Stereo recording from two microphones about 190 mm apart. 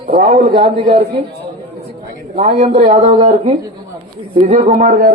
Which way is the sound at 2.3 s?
40° right (ahead or behind).